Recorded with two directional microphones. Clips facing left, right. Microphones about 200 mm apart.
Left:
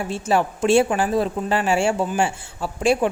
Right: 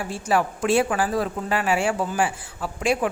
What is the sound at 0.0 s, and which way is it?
Speech, 25° left (ahead or behind).